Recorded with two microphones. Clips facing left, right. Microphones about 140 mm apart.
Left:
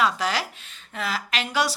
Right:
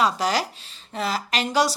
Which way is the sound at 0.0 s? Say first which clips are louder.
Right 2 dB; 40° right (ahead or behind).